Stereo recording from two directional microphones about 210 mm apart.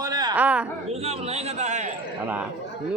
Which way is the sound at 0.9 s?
30° right (ahead or behind).